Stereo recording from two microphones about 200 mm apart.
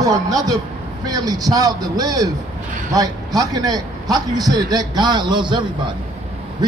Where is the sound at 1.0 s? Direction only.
20° right (ahead or behind).